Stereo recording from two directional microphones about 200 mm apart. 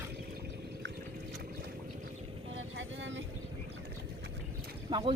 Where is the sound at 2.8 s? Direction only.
65° right (ahead or behind).